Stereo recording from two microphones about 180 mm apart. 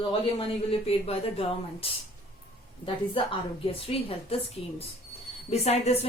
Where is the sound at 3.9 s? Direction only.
30° left (ahead or behind).